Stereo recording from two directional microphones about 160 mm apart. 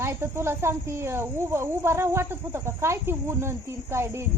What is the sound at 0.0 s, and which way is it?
Speech, 15° right (ahead or behind).